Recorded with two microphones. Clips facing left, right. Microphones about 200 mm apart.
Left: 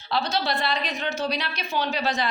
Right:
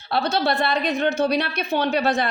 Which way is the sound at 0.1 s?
55° right (ahead or behind).